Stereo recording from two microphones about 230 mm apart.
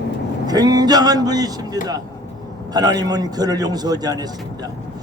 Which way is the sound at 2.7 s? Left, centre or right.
Centre.